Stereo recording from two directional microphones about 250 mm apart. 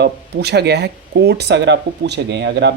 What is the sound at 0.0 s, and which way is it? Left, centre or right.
Speech, right.